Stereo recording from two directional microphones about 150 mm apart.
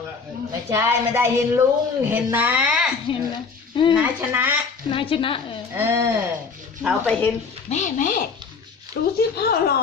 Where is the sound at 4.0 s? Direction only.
15° right (ahead or behind).